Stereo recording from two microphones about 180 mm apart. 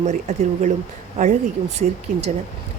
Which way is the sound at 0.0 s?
40° right (ahead or behind).